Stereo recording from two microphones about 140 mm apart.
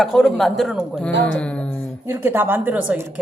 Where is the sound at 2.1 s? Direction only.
15° right (ahead or behind).